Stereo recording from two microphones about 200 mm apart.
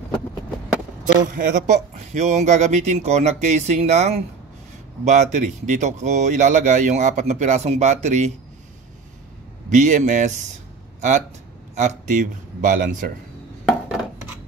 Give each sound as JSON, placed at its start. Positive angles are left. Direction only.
{"t": 1.2, "sound": "speech", "side_deg": -40}
{"t": 9.7, "sound": "speech", "side_deg": -40}